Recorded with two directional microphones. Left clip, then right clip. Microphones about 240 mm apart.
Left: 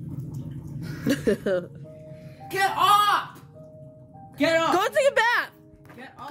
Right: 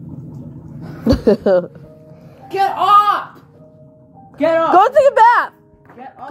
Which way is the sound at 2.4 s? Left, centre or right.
Left.